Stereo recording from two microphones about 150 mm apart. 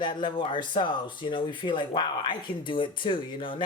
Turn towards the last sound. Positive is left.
turn(degrees=35)  # may be behind; listen again after turning